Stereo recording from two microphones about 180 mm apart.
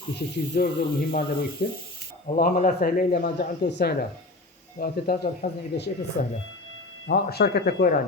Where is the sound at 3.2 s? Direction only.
70° left (ahead or behind).